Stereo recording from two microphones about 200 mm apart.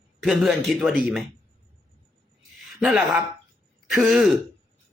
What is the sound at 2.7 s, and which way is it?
Speech, 5° right (ahead or behind).